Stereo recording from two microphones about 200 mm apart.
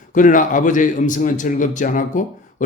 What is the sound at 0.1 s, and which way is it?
A man's voice, 40° left (ahead or behind).